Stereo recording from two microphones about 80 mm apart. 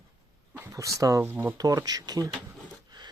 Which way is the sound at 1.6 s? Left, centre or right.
Right.